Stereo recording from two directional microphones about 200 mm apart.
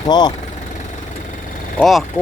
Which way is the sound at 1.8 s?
Centre (ahead or behind).